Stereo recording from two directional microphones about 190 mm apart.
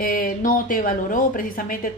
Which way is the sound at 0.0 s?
50° left (ahead or behind).